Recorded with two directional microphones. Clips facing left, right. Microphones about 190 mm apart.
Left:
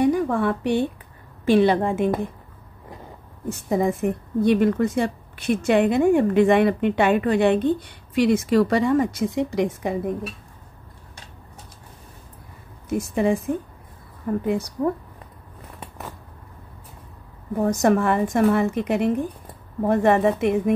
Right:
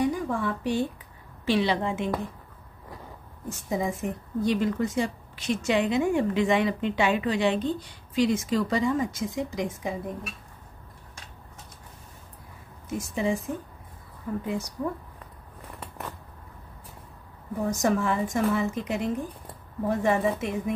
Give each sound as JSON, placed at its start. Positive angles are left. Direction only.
{"t": 0.0, "sound": "speech", "side_deg": 60}
{"t": 1.4, "sound": "a woman's voice", "side_deg": 50}
{"t": 3.4, "sound": "a woman's voice", "side_deg": 60}
{"t": 12.9, "sound": "a woman's voice", "side_deg": 55}
{"t": 17.6, "sound": "a woman's voice", "side_deg": 60}